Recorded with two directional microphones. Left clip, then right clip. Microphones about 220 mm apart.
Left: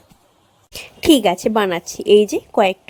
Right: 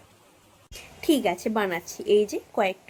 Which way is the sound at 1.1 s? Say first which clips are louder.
Left 10 dB; 45° left (ahead or behind).